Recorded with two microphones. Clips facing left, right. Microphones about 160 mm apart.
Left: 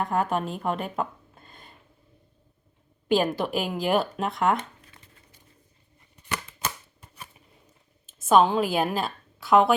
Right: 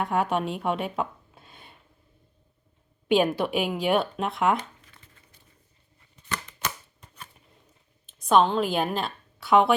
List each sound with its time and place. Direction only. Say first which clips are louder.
0.0 s speech: even; centre (ahead or behind)
3.1 s speech: right 1 dB; centre (ahead or behind)
7.0 s a sound: left 1 dB; 10° left (ahead or behind)
8.0 s a woman's voice: left 1 dB; 5° left (ahead or behind)